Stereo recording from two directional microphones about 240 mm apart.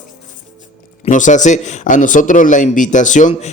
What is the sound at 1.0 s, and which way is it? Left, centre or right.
A man's voice, left.